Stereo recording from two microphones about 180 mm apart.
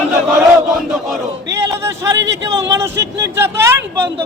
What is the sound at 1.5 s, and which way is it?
Speech, 15° right (ahead or behind).